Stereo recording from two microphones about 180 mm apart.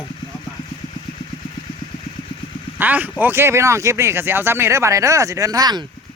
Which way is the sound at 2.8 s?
10° right (ahead or behind).